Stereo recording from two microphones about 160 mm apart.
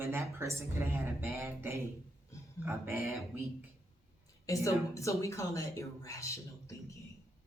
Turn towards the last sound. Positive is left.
turn(degrees=20)  # may be behind; listen again after turning